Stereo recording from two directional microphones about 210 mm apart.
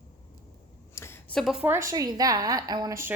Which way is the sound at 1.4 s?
5° right (ahead or behind).